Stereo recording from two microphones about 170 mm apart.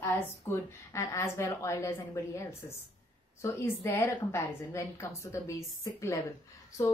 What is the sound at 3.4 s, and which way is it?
A woman's voice, 15° left (ahead or behind).